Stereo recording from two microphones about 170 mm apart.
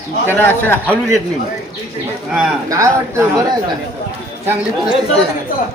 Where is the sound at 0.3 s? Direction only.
10° left (ahead or behind).